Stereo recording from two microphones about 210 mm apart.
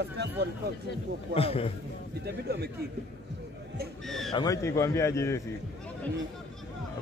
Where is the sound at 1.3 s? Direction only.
25° left (ahead or behind).